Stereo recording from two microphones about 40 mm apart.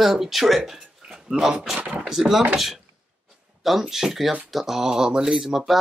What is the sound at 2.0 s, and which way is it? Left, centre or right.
Speech, centre.